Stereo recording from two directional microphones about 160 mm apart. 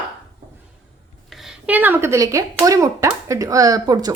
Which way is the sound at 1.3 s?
5° right (ahead or behind).